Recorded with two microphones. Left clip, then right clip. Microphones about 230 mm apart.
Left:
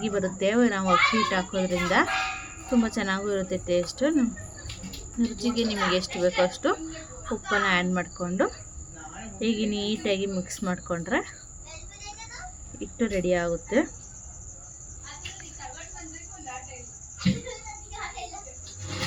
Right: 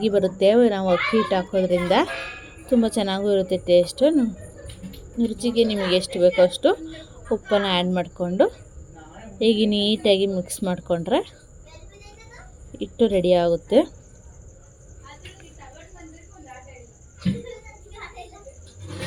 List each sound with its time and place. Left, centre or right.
0.0 s a child's voice: centre
5.4 s a child's voice: centre
12.8 s a child's voice: right